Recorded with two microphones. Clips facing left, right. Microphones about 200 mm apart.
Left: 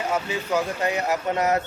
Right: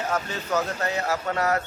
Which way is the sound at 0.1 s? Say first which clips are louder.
Left 3 dB; 10° left (ahead or behind).